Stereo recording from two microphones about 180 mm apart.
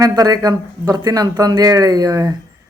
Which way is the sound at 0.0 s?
20° right (ahead or behind).